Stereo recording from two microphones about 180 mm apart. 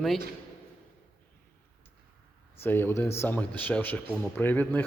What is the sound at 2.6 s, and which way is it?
Speech, 10° left (ahead or behind).